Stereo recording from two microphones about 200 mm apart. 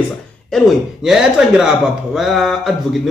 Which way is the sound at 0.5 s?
Centre (ahead or behind).